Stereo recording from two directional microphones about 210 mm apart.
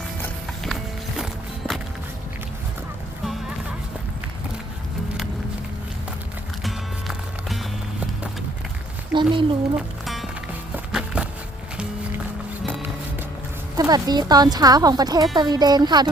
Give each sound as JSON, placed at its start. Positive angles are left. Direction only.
{"t": 0.2, "sound": "music", "side_deg": 0}
{"t": 6.6, "sound": "music", "side_deg": 0}
{"t": 9.1, "sound": "speech", "side_deg": -25}
{"t": 9.7, "sound": "music", "side_deg": 0}
{"t": 10.9, "sound": "a sound", "side_deg": -5}
{"t": 13.7, "sound": "speech", "side_deg": -20}